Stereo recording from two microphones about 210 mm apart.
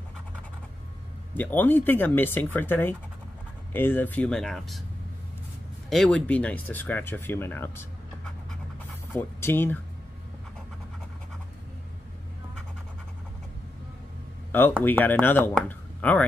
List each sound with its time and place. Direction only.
1.3 s speech: 10° left (ahead or behind)
5.9 s speech: 5° left (ahead or behind)
9.1 s speech: 10° left (ahead or behind)
14.5 s speech: 10° left (ahead or behind)